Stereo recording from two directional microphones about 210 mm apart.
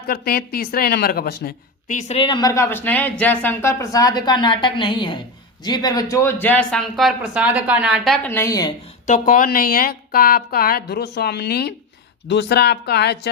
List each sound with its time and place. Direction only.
0.1 s speech: 45° left (ahead or behind); by 8.7 s 15° left (ahead or behind)
9.0 s a woman's voice: 40° left (ahead or behind)